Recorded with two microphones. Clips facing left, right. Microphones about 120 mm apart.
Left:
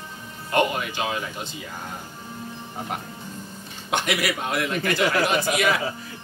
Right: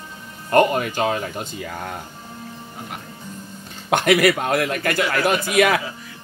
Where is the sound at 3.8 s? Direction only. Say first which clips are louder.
Right 9 dB; 55° right (ahead or behind).